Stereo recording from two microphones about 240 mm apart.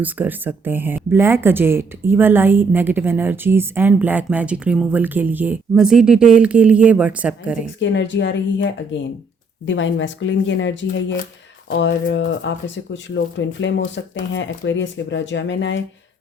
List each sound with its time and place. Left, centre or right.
0.0 s speech: centre
7.8 s speech: left